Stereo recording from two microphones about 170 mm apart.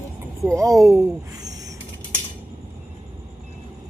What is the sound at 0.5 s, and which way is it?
Speech, 20° right (ahead or behind).